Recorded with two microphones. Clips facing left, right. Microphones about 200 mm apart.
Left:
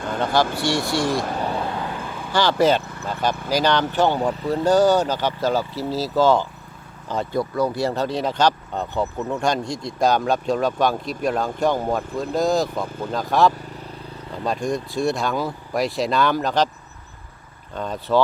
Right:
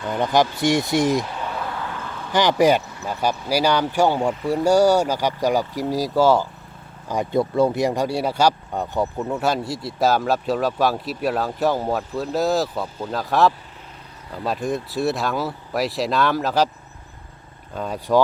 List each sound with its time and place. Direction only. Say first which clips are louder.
0.6 s speech: right 3 dB; 20° right (ahead or behind)
1.2 s a sound: left 4 dB; 45° left (ahead or behind); by 2.1 s 15° left (ahead or behind)
2.3 s speech: right 1 dB; 15° right (ahead or behind)
7.3 s speech: right 4 dB; 25° right (ahead or behind); by 16.6 s 5° right (ahead or behind)
17.7 s speech: right 1 dB; 10° right (ahead or behind)